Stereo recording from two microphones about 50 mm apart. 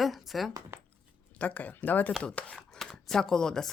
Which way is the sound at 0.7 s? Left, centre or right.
Right.